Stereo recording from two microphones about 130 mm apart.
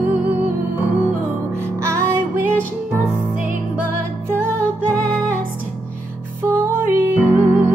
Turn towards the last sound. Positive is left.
turn(degrees=-15)  # may be behind; listen again after turning